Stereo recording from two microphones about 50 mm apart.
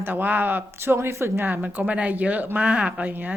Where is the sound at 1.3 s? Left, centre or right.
Right.